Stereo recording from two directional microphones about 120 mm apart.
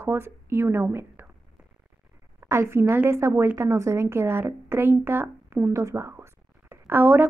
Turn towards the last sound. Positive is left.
turn(degrees=-15)  # may be behind; listen again after turning